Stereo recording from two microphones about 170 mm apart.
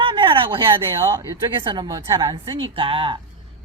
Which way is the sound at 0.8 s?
20° right (ahead or behind).